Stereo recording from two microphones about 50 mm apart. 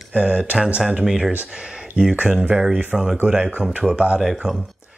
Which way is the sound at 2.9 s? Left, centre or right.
Centre.